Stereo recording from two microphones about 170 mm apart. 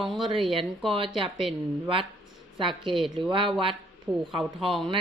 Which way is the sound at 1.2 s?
Centre (ahead or behind).